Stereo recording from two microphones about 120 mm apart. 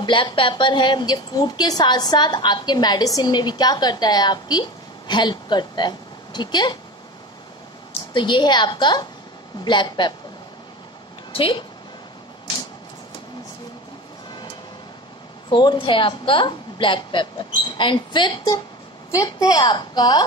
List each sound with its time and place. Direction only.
0.0 s a woman's voice: 45° left (ahead or behind)
7.9 s a woman's voice: 40° left (ahead or behind)
11.3 s a woman's voice: 45° left (ahead or behind)
15.5 s a woman's voice: 40° left (ahead or behind)